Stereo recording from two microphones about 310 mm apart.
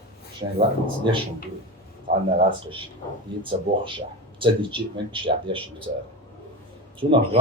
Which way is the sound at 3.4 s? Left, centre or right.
Centre.